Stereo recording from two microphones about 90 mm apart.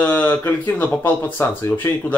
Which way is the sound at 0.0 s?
20° left (ahead or behind).